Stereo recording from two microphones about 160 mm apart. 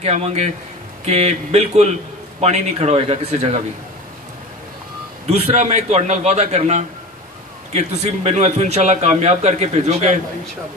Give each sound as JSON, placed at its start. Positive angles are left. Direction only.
{"t": 0.0, "sound": "a man's voice", "side_deg": -40}
{"t": 5.2, "sound": "a man's voice", "side_deg": -40}